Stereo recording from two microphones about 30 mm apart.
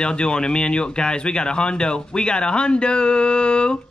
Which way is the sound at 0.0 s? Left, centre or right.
Left.